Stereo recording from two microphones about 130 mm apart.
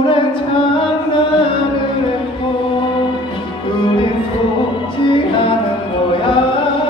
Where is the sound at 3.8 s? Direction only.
40° left (ahead or behind).